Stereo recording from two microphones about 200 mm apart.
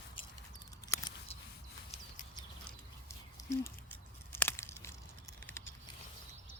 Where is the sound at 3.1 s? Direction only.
15° left (ahead or behind).